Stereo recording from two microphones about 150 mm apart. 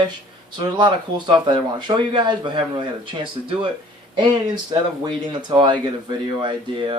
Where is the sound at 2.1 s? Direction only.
30° right (ahead or behind).